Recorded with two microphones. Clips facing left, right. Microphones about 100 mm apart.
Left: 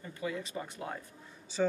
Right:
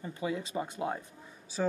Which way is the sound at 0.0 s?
20° right (ahead or behind).